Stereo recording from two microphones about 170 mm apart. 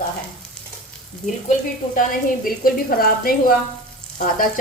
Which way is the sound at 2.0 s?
55° left (ahead or behind).